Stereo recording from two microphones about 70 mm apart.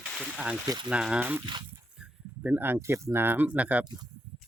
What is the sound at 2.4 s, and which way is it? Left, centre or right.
Speech, right.